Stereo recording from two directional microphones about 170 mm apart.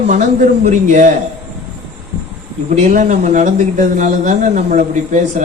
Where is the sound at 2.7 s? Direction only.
45° right (ahead or behind).